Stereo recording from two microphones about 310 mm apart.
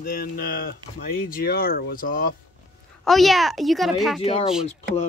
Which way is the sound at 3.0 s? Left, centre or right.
Centre.